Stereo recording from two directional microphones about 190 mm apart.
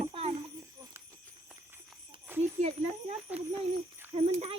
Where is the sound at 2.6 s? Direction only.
35° right (ahead or behind).